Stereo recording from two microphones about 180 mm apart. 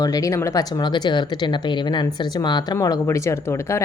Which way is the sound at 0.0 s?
20° left (ahead or behind).